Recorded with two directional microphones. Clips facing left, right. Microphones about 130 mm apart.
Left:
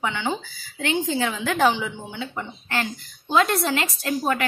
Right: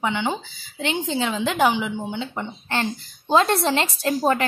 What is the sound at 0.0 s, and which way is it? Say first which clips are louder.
Speech: right 2 dB; 20° right (ahead or behind).